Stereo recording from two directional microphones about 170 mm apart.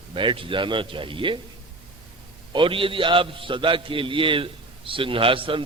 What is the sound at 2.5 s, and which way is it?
A man's voice, 30° right (ahead or behind).